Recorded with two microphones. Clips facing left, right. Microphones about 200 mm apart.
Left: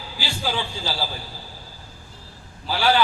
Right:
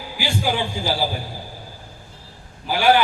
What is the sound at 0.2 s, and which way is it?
Speech, 15° right (ahead or behind).